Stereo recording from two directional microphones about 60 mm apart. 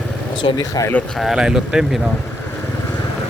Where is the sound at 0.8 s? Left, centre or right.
Left.